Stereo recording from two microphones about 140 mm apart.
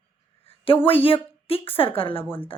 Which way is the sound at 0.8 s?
40° left (ahead or behind).